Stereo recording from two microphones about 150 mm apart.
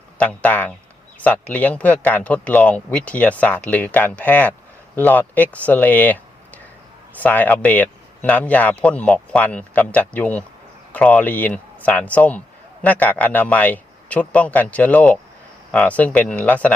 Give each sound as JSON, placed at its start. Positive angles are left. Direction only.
{"t": 0.2, "sound": "speech", "side_deg": 10}